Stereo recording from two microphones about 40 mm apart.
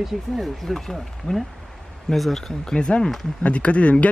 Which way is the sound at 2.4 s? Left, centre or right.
Centre.